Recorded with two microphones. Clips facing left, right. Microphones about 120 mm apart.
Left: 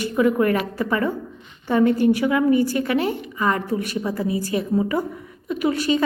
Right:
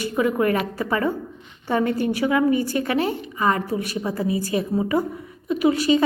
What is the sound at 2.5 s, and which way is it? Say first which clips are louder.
Speech: left 3 dB; 35° left (ahead or behind).